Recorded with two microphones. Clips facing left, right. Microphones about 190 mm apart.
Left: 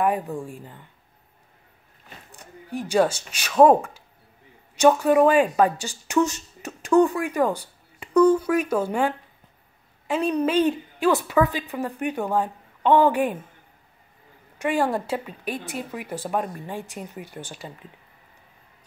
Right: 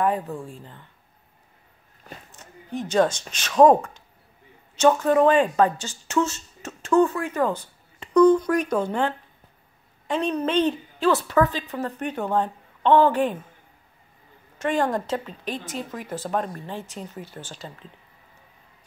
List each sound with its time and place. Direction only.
0.0 s speech: 10° left (ahead or behind)
2.3 s speech: 10° left (ahead or behind)
14.6 s speech: 10° left (ahead or behind)